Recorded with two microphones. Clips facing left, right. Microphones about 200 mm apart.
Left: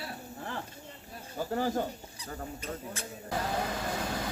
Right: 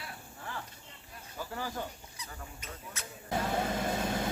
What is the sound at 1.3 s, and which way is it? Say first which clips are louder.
Speech: left 8 dB; 40° left (ahead or behind).